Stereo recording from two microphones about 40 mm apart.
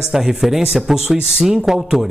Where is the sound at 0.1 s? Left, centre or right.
Centre.